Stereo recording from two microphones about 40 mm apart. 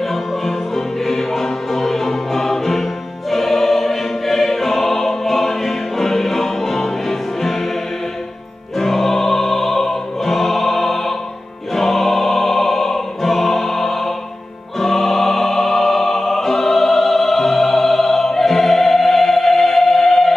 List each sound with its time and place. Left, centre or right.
0.0 s music: centre
8.7 s music: centre